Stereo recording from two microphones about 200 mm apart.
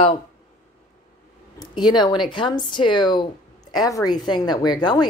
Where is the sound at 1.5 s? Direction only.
20° left (ahead or behind).